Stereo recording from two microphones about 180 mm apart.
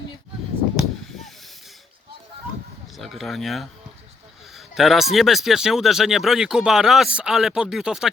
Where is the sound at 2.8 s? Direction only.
Centre (ahead or behind).